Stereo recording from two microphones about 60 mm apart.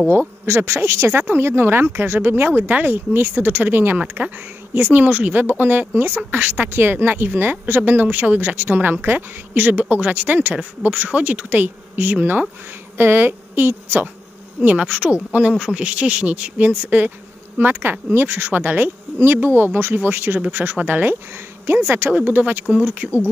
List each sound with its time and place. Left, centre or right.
0.5 s a woman's voice: right
14.8 s speech: centre